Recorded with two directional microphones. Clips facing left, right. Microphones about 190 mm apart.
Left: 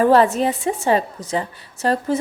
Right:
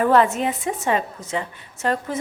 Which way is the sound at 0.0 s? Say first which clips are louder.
Left 3 dB; 35° left (ahead or behind).